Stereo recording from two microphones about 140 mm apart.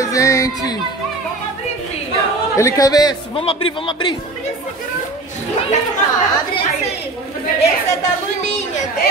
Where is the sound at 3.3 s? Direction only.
40° left (ahead or behind).